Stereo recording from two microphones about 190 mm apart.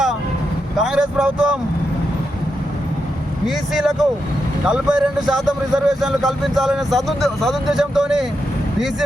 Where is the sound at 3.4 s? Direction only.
Centre (ahead or behind).